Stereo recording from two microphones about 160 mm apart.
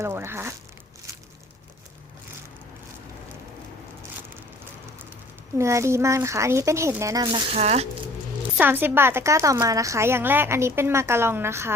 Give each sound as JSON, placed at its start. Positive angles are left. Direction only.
{"t": 0.0, "sound": "a woman's voice", "side_deg": -15}
{"t": 5.5, "sound": "a woman's voice", "side_deg": -15}
{"t": 7.5, "sound": "speech", "side_deg": -40}
{"t": 8.5, "sound": "a woman's voice", "side_deg": -10}